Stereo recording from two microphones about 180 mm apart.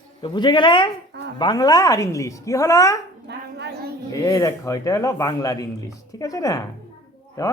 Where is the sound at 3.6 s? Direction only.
70° right (ahead or behind).